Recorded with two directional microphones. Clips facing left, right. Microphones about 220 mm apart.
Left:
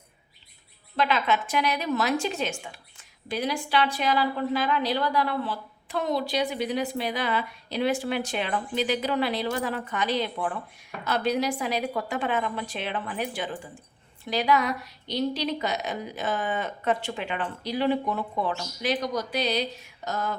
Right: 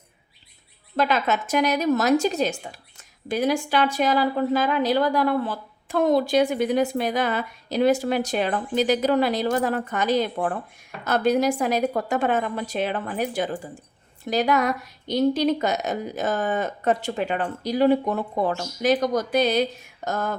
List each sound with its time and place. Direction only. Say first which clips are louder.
0.9 s a woman's voice: right 3 dB; 45° right (ahead or behind)